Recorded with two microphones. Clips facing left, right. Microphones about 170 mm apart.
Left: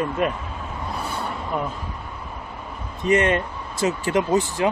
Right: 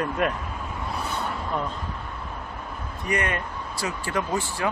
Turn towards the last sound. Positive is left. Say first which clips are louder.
# left 6 dB
turn(degrees=20)  # may be behind; listen again after turning